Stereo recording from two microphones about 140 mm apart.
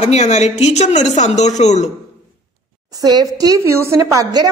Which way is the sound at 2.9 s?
30° right (ahead or behind).